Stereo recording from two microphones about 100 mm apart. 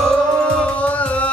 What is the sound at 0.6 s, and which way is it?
Music, 15° left (ahead or behind).